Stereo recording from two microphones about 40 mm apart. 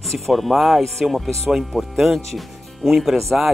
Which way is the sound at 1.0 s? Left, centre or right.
Centre.